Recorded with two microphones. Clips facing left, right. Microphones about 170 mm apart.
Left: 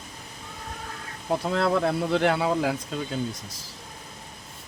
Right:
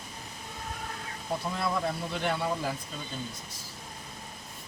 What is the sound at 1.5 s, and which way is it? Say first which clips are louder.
Speech: left 8 dB; 75° left (ahead or behind).